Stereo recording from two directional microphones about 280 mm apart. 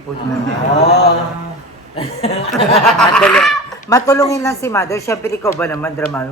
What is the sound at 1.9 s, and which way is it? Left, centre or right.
Speech, left.